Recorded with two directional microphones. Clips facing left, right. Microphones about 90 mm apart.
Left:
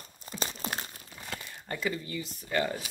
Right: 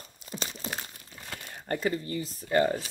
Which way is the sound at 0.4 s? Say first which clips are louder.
Left 2 dB; 50° left (ahead or behind).